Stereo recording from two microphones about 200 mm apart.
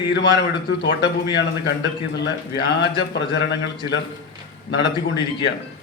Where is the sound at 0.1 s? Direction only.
60° left (ahead or behind).